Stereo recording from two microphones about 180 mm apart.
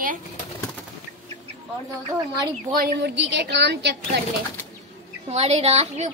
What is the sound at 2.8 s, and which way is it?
A woman's voice, 65° right (ahead or behind).